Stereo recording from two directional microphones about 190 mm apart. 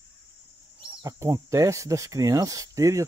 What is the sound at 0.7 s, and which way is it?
Speech, 20° right (ahead or behind).